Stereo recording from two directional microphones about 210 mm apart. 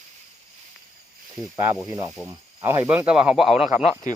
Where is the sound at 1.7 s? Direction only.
15° right (ahead or behind).